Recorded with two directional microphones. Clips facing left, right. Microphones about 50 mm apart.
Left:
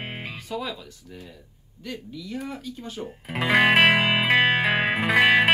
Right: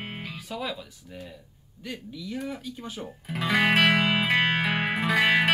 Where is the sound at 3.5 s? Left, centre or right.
Left.